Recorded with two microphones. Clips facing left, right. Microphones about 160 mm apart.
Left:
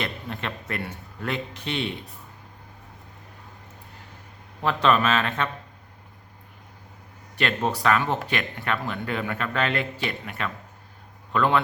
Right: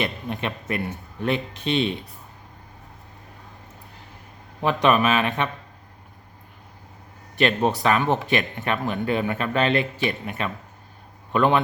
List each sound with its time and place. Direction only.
0.0 s a man's voice: 15° right (ahead or behind)
4.6 s a man's voice: 15° right (ahead or behind)
7.3 s a man's voice: 20° right (ahead or behind)